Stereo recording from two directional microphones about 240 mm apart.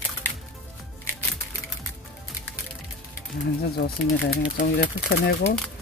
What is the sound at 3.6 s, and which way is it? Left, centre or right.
Speech, left.